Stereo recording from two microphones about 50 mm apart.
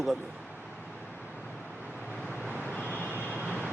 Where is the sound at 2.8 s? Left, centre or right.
Left.